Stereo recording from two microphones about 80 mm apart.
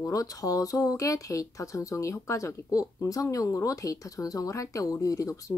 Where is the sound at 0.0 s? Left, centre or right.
Left.